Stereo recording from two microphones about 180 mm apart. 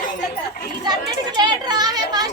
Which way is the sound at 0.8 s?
25° right (ahead or behind).